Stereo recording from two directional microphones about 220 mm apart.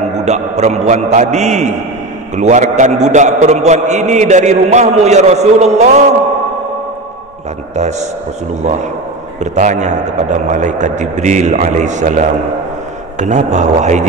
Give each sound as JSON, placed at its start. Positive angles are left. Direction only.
{"t": 0.2, "sound": "a man's voice", "side_deg": -30}
{"t": 9.4, "sound": "a man's voice", "side_deg": -35}